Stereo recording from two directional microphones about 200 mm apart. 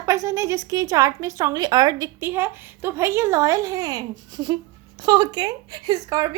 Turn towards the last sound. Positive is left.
turn(degrees=-20)  # may be behind; listen again after turning